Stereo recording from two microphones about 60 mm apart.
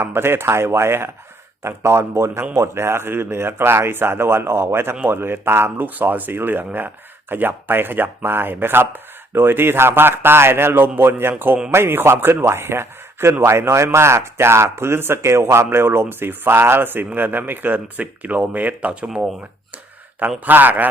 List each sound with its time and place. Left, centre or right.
0.0 s a man's voice: right
5.8 s a man's voice: right
20.4 s speech: right